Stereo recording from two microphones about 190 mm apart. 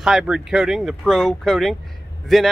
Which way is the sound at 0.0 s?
Centre (ahead or behind).